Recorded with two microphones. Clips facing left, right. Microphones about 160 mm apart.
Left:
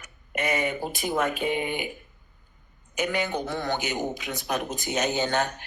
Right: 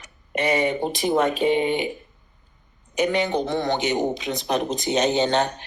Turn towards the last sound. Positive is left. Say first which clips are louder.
# right 5 dB
turn(degrees=-35)  # may be behind; listen again after turning